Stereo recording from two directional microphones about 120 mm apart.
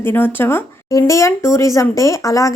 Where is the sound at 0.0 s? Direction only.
15° left (ahead or behind).